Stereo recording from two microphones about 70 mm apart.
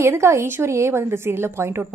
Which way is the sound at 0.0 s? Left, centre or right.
Right.